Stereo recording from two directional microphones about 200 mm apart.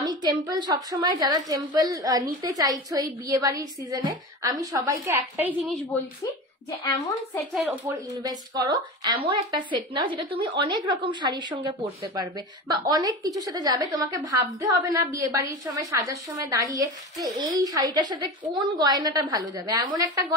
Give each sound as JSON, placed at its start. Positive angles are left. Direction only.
{"t": 0.2, "sound": "a woman's voice", "side_deg": -20}
{"t": 7.5, "sound": "speech", "side_deg": 0}
{"t": 7.9, "sound": "a woman's voice", "side_deg": -20}